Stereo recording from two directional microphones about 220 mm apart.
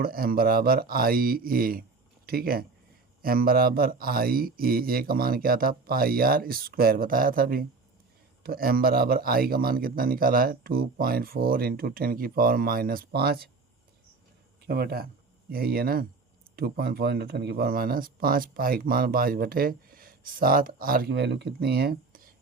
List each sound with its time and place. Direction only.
0.0 s speech: 40° right (ahead or behind)
14.7 s speech: 45° right (ahead or behind)